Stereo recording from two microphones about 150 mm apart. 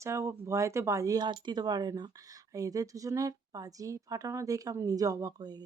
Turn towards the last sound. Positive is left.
turn(degrees=-25)  # may be behind; listen again after turning